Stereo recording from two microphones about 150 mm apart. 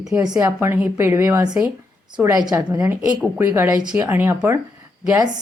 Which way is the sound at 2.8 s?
15° right (ahead or behind).